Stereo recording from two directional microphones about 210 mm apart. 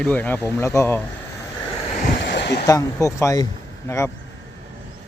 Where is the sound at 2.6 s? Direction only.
15° left (ahead or behind).